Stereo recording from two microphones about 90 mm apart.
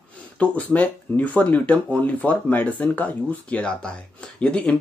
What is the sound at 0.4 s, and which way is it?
Speech, 15° left (ahead or behind).